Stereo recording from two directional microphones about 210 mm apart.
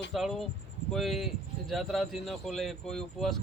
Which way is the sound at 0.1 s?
Centre (ahead or behind).